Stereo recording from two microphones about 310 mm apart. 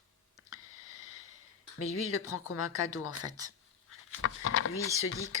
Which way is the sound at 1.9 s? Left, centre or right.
Left.